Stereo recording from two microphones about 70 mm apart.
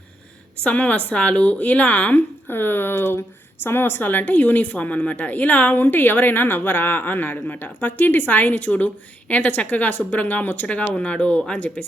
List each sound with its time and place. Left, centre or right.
0.6 s speech: left